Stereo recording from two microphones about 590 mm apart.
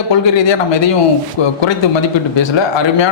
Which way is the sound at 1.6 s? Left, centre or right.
Left.